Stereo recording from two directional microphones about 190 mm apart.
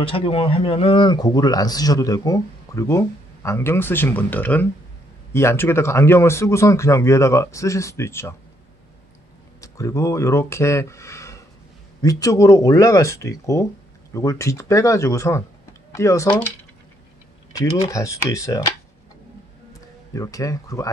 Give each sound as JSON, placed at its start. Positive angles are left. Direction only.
{"t": 0.0, "sound": "speech", "side_deg": 30}
{"t": 9.6, "sound": "speech", "side_deg": 15}
{"t": 20.2, "sound": "speech", "side_deg": 20}